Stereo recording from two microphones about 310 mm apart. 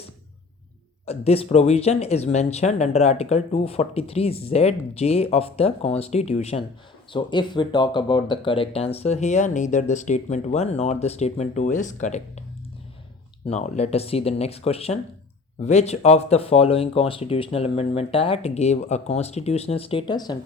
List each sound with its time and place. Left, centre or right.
1.0 s speech: centre
13.5 s speech: left